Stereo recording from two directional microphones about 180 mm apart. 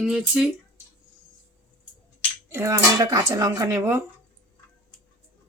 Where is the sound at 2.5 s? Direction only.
15° right (ahead or behind).